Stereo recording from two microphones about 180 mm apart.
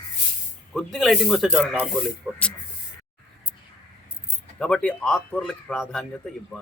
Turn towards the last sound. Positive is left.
turn(degrees=0)  # may be behind; listen again after turning